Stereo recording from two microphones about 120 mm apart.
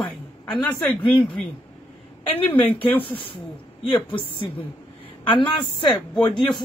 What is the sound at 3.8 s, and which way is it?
A woman's voice, 45° left (ahead or behind).